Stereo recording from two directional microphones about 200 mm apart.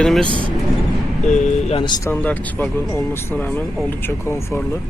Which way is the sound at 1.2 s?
35° left (ahead or behind).